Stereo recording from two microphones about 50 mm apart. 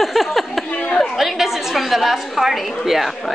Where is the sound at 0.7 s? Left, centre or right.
Left.